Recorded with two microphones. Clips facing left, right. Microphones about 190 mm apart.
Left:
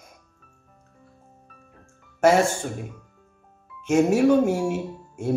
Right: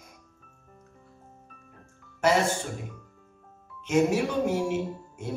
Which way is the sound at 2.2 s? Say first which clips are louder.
Left 5 dB; 45° left (ahead or behind).